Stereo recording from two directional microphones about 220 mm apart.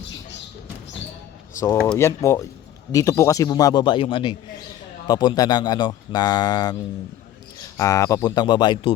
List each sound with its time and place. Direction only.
1.5 s speech: 15° left (ahead or behind)
7.8 s speech: 15° left (ahead or behind)